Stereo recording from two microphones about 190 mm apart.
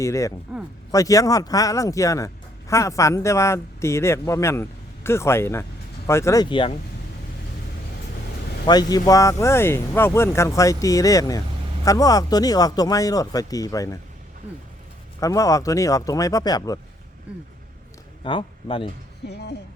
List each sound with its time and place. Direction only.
0.0 s speech: 15° left (ahead or behind)
8.6 s speech: 20° left (ahead or behind)
15.2 s speech: 15° left (ahead or behind)
17.3 s speech: 5° right (ahead or behind)
18.2 s speech: 25° left (ahead or behind)
19.3 s speech: 60° left (ahead or behind)